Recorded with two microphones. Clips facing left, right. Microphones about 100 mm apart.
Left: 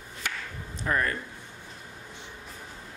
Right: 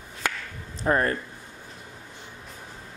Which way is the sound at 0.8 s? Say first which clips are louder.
Right 5 dB; 35° right (ahead or behind).